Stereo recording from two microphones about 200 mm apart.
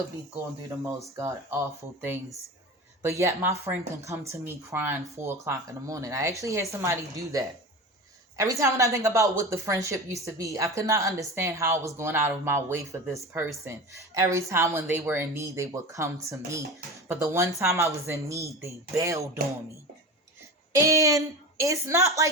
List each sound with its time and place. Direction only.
1.1 s speech: 15° right (ahead or behind)
20.7 s speech: 15° right (ahead or behind)